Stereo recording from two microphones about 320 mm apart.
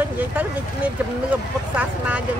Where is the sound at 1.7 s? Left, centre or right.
Centre.